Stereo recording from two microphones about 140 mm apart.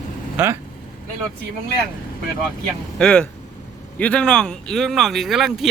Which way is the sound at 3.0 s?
5° left (ahead or behind).